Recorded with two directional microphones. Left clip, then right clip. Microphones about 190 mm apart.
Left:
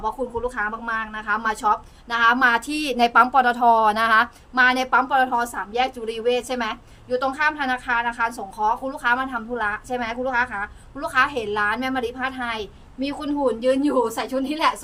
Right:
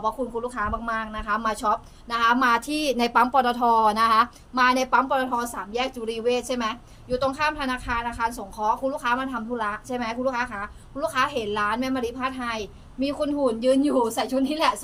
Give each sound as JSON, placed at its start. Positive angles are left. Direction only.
{"t": 0.0, "sound": "a woman's voice", "side_deg": 15}